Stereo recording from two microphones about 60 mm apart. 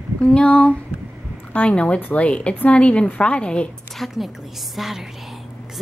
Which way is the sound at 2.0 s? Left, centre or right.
Left.